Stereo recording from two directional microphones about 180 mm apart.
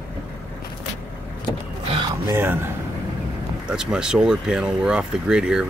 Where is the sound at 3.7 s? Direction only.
5° right (ahead or behind).